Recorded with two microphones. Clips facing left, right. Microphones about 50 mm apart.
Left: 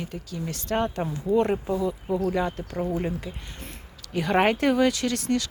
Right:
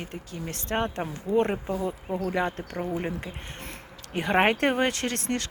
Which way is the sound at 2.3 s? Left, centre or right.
Right.